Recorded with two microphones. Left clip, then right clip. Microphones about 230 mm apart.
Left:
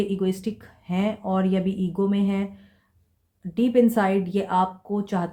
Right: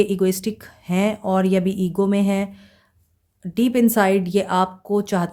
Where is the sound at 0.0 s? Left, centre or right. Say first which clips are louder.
Right 7 dB; right.